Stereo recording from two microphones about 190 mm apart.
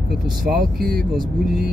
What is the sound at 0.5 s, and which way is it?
Speech, 50° right (ahead or behind).